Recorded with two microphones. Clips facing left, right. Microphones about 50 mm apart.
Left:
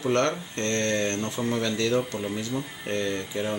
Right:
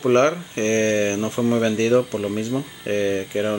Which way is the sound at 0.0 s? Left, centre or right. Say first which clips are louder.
Right 7 dB; right.